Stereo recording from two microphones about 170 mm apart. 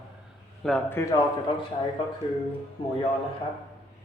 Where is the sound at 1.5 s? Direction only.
30° left (ahead or behind).